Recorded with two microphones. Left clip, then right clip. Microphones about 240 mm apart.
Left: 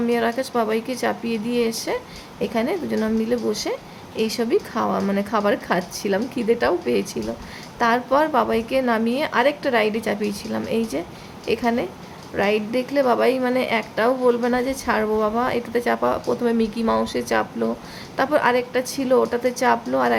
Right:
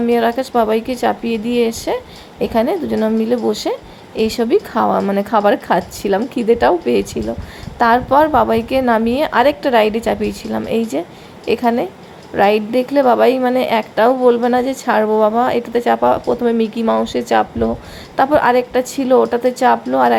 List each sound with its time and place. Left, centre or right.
0.1 s a woman's voice: centre